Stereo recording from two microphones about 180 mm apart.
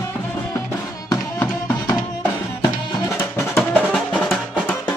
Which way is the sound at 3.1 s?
15° left (ahead or behind).